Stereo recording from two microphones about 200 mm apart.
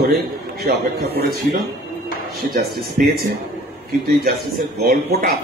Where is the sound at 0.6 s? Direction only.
50° right (ahead or behind).